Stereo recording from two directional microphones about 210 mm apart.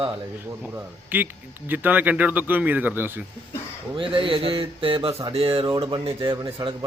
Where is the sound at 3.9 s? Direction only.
25° right (ahead or behind).